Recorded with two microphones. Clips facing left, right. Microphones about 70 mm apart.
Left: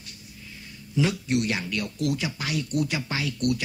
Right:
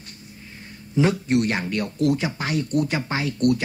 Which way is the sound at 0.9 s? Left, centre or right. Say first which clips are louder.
Right 5 dB; right.